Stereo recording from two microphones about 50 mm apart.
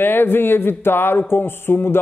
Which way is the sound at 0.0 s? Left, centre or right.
Left.